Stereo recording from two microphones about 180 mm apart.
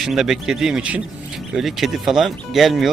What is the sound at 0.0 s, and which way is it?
Speech, centre (ahead or behind).